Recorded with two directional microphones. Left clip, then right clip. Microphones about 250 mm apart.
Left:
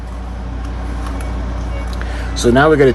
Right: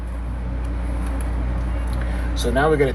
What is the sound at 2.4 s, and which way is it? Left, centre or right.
Speech, left.